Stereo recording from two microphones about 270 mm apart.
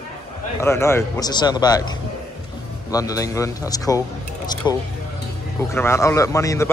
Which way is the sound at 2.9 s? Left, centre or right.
Centre.